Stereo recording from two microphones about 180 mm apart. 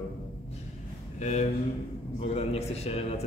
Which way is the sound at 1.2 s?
40° left (ahead or behind).